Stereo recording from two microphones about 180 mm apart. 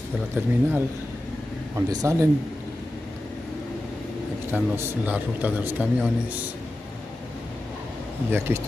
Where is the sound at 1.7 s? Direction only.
20° right (ahead or behind).